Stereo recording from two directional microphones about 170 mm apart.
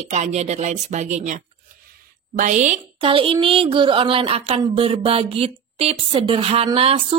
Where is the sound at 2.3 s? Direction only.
50° right (ahead or behind).